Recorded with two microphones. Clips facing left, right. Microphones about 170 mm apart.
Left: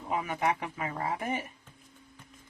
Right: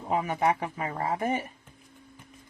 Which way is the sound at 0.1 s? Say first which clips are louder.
Right 4 dB; 40° right (ahead or behind).